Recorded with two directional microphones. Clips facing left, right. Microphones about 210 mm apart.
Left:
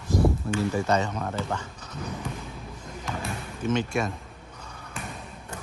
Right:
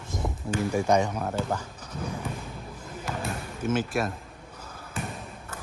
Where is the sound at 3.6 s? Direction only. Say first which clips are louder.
Left 1 dB; 5° right (ahead or behind).